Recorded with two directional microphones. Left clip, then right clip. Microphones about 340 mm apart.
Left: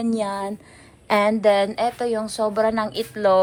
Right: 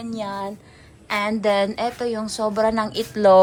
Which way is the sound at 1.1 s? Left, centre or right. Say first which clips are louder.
Left 4 dB; centre.